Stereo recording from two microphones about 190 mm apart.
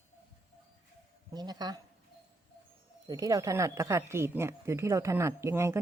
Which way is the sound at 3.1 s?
20° right (ahead or behind).